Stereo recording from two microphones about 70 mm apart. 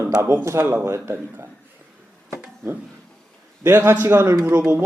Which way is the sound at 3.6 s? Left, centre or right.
Right.